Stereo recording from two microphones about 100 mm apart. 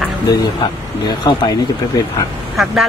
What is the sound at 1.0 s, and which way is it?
Speech, 45° left (ahead or behind).